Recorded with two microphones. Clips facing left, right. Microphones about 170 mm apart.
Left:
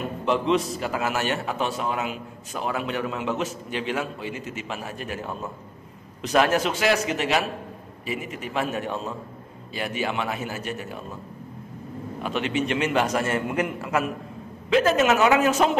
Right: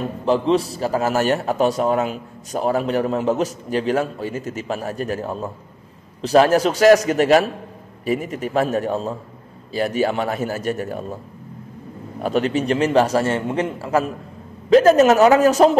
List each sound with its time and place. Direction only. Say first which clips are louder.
0.0 s a man's voice: right 5 dB; 35° right (ahead or behind)
12.2 s a man's voice: right 6 dB; 40° right (ahead or behind)